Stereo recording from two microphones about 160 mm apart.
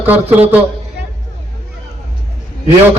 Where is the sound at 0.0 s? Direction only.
10° right (ahead or behind).